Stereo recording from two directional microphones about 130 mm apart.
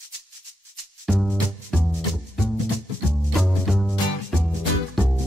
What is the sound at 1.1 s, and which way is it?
Music, 10° left (ahead or behind).